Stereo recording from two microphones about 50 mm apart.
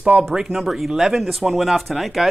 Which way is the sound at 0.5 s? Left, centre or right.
Centre.